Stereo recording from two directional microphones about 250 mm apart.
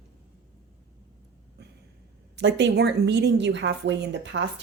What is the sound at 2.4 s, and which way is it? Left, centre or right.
A woman's voice, right.